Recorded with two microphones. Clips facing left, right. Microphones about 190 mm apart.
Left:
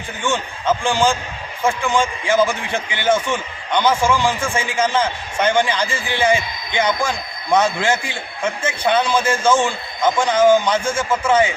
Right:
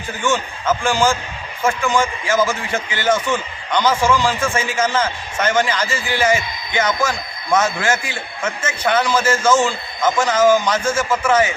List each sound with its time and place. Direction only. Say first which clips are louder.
0.2 s a man's voice: right 2 dB; 15° left (ahead or behind)